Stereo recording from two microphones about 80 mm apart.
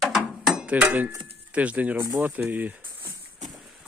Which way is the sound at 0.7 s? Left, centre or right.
Centre.